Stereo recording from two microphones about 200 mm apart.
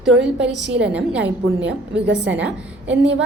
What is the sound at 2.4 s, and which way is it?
Speech, 5° right (ahead or behind).